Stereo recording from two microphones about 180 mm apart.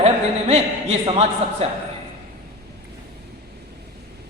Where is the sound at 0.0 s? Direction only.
35° right (ahead or behind).